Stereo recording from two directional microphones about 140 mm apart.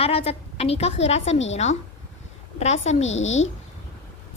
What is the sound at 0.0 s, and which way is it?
A woman's voice, 45° left (ahead or behind).